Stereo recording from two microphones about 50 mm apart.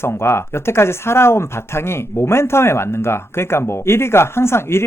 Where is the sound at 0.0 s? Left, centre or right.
Left.